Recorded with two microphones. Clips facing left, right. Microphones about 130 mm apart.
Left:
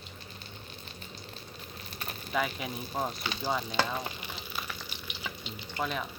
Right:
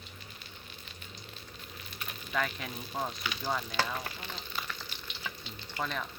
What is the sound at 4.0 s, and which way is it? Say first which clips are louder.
Frying: left 2 dB; 20° left (ahead or behind).